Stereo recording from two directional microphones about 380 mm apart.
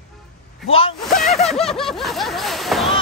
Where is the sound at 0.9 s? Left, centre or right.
Centre.